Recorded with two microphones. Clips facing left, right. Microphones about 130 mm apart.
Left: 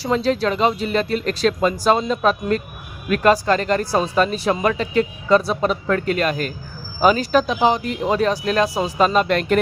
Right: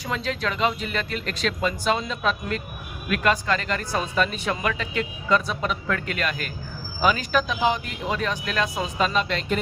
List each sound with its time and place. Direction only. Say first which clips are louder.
0.0 s speech: left 9 dB; 35° left (ahead or behind); by 9.6 s 55° left (ahead or behind)